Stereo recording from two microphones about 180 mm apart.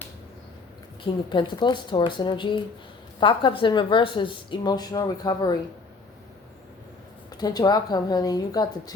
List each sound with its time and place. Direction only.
1.0 s a woman's voice: 25° left (ahead or behind)
7.3 s a woman's voice: 20° left (ahead or behind)